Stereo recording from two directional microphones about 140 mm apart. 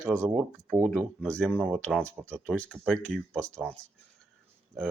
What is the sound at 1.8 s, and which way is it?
Speech, 5° left (ahead or behind).